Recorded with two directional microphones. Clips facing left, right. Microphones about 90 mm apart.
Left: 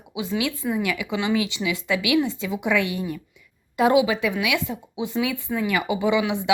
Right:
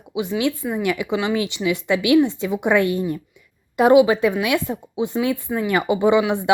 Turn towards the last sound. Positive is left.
turn(degrees=-35)  # may be behind; listen again after turning